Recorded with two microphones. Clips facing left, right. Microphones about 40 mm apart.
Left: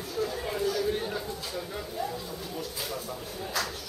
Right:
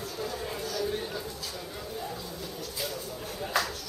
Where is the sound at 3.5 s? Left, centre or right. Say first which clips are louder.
Right 3 dB; right.